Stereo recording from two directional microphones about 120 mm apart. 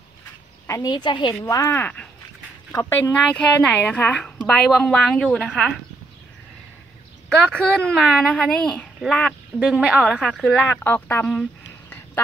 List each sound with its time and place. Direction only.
0.7 s a woman's voice: 25° left (ahead or behind)
0.9 s a woman's voice: 40° left (ahead or behind)
1.3 s speech: 25° left (ahead or behind)
1.8 s a woman's voice: 10° left (ahead or behind)
7.5 s speech: 5° left (ahead or behind)
9.6 s a woman's voice: 10° right (ahead or behind)
10.0 s speech: 5° left (ahead or behind)
10.7 s a woman's voice: 15° left (ahead or behind)